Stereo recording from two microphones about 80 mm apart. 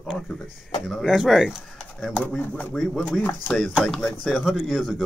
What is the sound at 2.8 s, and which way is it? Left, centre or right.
Speech, centre.